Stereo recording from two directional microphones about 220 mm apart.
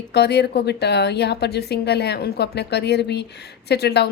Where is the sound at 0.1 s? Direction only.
50° left (ahead or behind).